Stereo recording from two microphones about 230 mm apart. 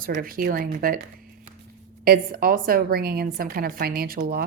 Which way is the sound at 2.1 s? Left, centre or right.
Right.